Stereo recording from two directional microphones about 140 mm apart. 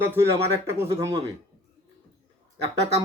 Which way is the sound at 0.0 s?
15° right (ahead or behind).